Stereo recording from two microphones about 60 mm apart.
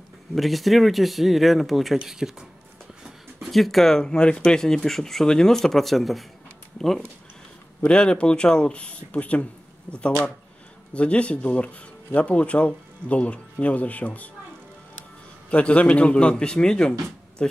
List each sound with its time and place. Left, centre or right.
0.4 s speech: centre
7.9 s speech: centre
10.9 s speech: centre
15.5 s speech: left